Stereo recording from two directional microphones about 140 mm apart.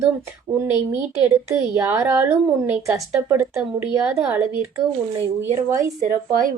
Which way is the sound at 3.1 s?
20° right (ahead or behind).